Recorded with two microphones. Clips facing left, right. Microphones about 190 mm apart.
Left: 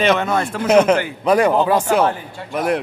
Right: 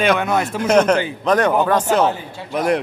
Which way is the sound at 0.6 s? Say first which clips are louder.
Left 2 dB; 5° left (ahead or behind).